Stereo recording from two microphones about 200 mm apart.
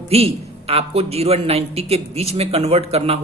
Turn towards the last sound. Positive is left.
turn(degrees=-30)  # may be behind; listen again after turning